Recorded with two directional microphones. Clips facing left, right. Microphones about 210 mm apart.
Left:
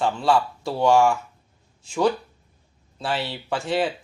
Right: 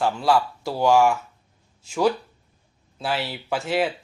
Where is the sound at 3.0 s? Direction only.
Centre (ahead or behind).